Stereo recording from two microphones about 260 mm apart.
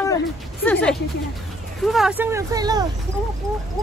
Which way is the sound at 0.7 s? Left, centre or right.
Centre.